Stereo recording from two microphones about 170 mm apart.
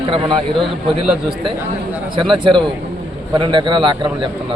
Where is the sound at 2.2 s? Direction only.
30° right (ahead or behind).